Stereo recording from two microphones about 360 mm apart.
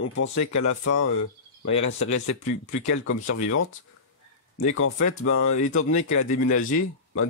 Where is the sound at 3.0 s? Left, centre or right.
Left.